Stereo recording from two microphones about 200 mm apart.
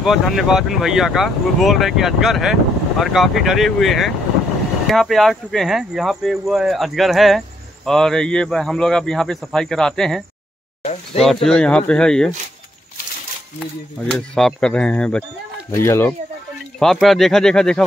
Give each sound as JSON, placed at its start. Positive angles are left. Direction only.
{"t": 0.0, "sound": "speech", "side_deg": 0}
{"t": 11.4, "sound": "speech", "side_deg": 5}
{"t": 14.1, "sound": "speech", "side_deg": 5}
{"t": 16.8, "sound": "speech", "side_deg": 0}